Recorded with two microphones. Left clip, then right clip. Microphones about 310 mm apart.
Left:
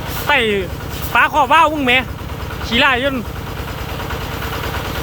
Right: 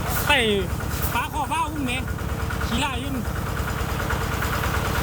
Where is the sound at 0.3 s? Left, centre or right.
Centre.